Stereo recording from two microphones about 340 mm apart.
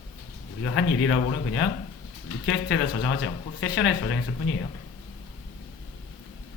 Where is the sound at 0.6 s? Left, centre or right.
Left.